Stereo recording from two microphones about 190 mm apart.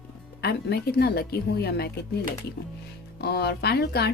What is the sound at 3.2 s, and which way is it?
Speech, 55° left (ahead or behind).